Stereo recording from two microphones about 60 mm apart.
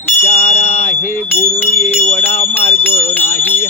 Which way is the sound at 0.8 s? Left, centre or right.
Left.